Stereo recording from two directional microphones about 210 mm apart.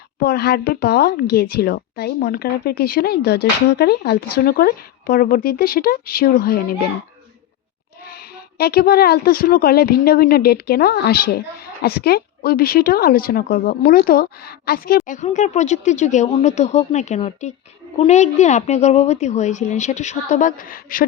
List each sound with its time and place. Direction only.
0.2 s a woman's voice: 50° left (ahead or behind)
8.0 s a woman's voice: 45° left (ahead or behind)